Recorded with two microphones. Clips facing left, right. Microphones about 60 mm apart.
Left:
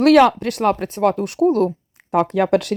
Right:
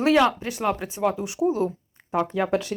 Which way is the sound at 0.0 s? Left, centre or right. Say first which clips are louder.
Left 7 dB; left.